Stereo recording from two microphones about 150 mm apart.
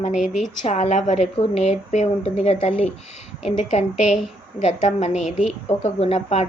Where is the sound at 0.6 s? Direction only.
50° left (ahead or behind).